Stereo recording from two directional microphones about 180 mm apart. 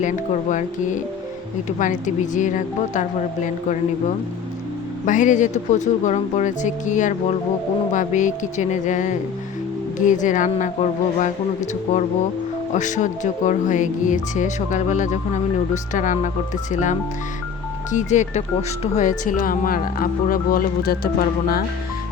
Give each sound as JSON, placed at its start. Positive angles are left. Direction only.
{"t": 0.5, "sound": "speech", "side_deg": 45}
{"t": 5.0, "sound": "speech", "side_deg": 45}